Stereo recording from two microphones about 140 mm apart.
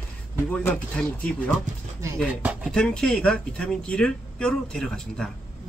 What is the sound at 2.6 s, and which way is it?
Speech, 5° left (ahead or behind).